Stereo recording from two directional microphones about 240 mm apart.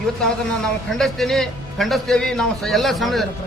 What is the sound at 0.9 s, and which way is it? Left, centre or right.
A man's voice, centre.